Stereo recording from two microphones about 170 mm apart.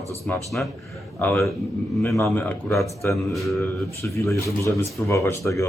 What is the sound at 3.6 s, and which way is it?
Speech, 15° left (ahead or behind).